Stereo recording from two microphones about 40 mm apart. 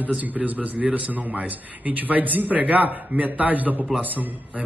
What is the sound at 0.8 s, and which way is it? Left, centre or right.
A man's voice, right.